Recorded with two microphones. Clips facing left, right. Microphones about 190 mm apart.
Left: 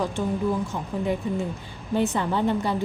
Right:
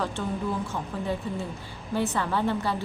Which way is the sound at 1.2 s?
15° left (ahead or behind).